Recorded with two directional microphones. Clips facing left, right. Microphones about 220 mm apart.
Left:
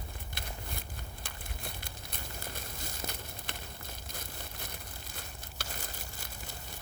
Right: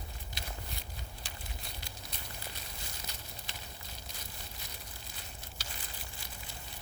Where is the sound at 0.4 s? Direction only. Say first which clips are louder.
Left 2 dB; 55° left (ahead or behind).